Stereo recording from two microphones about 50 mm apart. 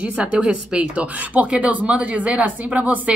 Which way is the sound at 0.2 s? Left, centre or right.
Right.